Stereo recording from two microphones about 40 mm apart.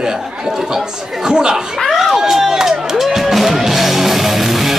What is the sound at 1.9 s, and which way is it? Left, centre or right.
Music, centre.